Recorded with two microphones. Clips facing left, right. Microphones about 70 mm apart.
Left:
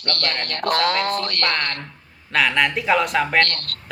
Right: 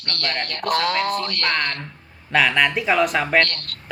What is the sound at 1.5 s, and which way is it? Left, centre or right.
Speech, centre.